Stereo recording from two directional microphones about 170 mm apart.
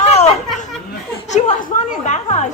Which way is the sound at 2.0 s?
40° left (ahead or behind).